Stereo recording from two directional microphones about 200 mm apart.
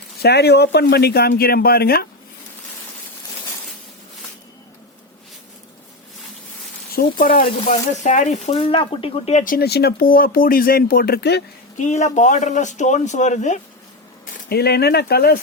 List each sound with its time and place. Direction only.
0.2 s speech: 55° left (ahead or behind)
6.9 s speech: 45° left (ahead or behind)
7.3 s speech: 35° left (ahead or behind); by 11.4 s 55° left (ahead or behind)
11.8 s a man's voice: 35° left (ahead or behind)
14.5 s speech: 55° left (ahead or behind)